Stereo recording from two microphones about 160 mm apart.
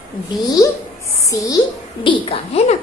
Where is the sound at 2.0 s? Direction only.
35° left (ahead or behind).